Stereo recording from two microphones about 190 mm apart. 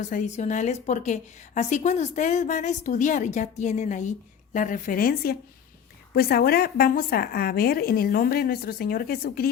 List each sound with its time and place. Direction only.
0.0 s a woman's voice: 40° left (ahead or behind)